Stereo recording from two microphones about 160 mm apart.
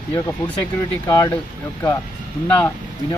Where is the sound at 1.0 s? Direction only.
20° left (ahead or behind).